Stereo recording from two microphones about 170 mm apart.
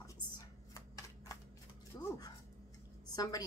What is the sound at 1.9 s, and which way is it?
Speech, 20° left (ahead or behind).